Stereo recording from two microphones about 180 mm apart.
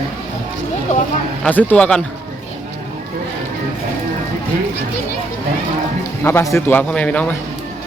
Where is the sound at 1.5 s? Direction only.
10° left (ahead or behind).